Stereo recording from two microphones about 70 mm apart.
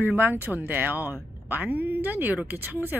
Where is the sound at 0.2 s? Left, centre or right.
Right.